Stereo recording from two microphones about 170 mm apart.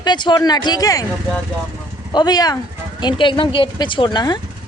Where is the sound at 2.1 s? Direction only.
25° left (ahead or behind).